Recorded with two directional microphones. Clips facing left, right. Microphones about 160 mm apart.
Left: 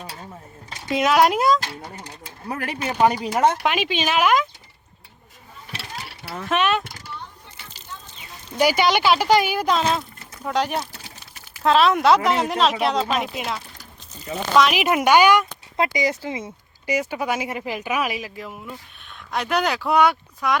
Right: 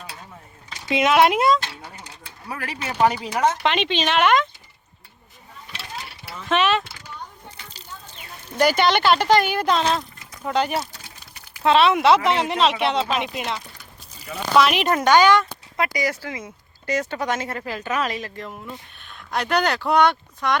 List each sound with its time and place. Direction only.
0.0 s a sound: 35° left (ahead or behind)
0.9 s speech: centre (ahead or behind)
2.0 s a sound: 40° left (ahead or behind)
3.1 s speech: 40° left (ahead or behind)
3.6 s speech: 5° left (ahead or behind)
6.5 s speech: centre (ahead or behind)
8.5 s speech: 5° left (ahead or behind)